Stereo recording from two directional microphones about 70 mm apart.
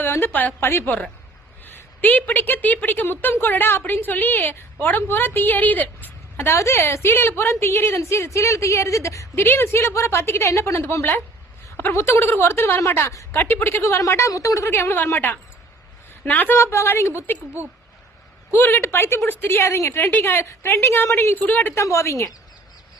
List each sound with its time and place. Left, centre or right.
0.3 s a woman's voice: left
9.3 s a woman's voice: left
13.0 s a woman's voice: left
13.4 s a woman's voice: left
13.8 s a woman's voice: left
14.7 s a woman's voice: left
16.6 s a woman's voice: left
21.8 s a woman's voice: left